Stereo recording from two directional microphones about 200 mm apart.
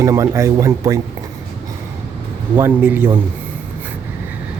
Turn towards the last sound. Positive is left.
turn(degrees=-10)  # may be behind; listen again after turning